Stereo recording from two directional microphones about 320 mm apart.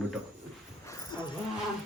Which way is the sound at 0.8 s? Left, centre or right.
Centre.